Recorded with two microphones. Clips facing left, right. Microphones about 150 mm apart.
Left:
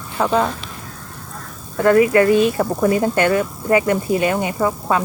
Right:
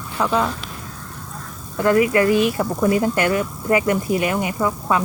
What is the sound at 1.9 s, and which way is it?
Speech, 30° left (ahead or behind).